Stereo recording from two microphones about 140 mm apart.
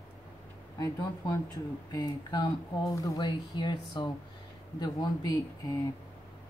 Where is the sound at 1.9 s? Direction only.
30° left (ahead or behind).